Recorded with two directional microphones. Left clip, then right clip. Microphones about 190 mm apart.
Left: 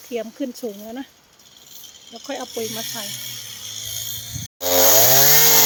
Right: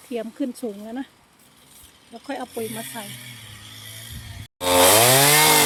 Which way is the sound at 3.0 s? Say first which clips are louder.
Left 7 dB; 55° left (ahead or behind).